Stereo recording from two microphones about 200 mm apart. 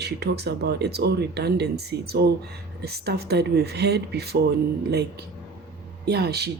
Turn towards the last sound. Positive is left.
turn(degrees=-55)  # may be behind; listen again after turning